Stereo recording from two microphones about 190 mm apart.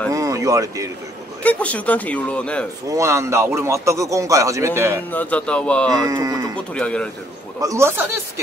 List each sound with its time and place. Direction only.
0.1 s a sound: 15° right (ahead or behind)
1.4 s speech: 5° left (ahead or behind)
2.9 s a man's voice: 15° right (ahead or behind)
5.1 s speech: 10° left (ahead or behind)
5.9 s a man's voice: 20° right (ahead or behind)
6.7 s speech: 5° left (ahead or behind)
7.6 s a man's voice: 15° right (ahead or behind)